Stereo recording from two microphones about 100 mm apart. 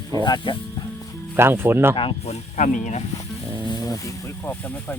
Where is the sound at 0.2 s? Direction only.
50° left (ahead or behind).